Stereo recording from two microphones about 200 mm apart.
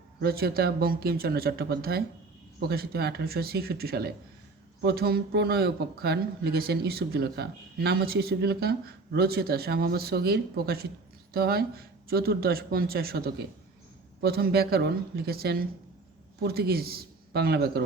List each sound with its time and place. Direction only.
0.2 s speech: 50° right (ahead or behind)